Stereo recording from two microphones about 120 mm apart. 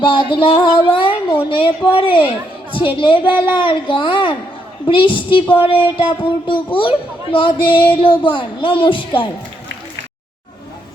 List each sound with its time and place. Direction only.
0.1 s a woman's voice: 45° left (ahead or behind)